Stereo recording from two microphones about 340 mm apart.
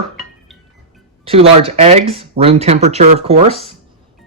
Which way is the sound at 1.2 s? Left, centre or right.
Centre.